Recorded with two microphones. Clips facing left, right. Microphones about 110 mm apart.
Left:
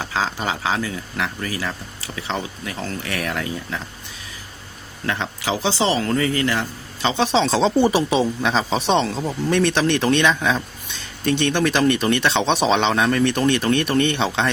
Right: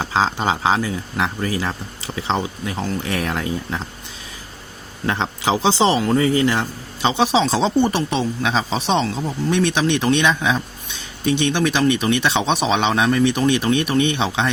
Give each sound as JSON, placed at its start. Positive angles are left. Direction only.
{"t": 0.0, "sound": "speech", "side_deg": -25}
{"t": 5.0, "sound": "speech", "side_deg": -25}